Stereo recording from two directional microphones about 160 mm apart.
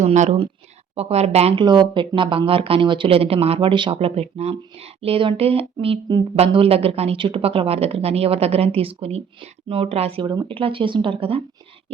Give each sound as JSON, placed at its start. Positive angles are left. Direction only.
{"t": 0.0, "sound": "speech", "side_deg": -45}